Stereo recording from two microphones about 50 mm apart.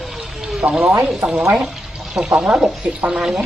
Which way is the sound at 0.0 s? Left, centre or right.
Centre.